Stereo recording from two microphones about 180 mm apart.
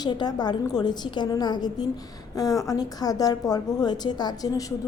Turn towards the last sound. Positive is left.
turn(degrees=20)  # may be behind; listen again after turning